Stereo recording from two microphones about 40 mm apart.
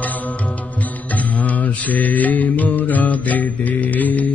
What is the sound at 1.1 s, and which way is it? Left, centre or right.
Mantra, left.